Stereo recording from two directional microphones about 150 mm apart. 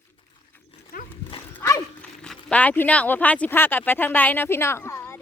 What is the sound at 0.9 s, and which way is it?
Dog, 70° left (ahead or behind).